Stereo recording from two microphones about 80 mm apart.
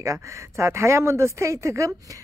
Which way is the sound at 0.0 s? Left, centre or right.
Right.